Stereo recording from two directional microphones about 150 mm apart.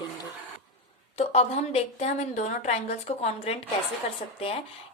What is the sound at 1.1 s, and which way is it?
Speech, 45° left (ahead or behind).